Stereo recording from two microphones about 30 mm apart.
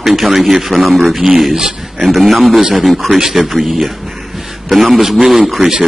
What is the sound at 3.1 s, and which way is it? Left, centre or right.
Speech, centre.